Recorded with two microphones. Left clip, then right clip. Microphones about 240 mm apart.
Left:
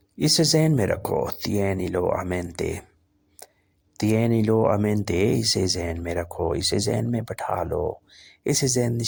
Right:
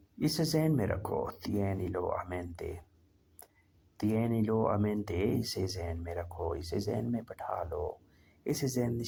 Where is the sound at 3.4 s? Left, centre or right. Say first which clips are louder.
Left 12 dB; left.